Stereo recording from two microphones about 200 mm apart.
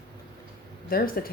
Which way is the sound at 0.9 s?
45° left (ahead or behind).